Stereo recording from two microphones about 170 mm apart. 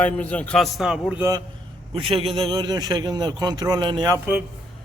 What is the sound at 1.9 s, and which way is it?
A man's voice, 35° right (ahead or behind).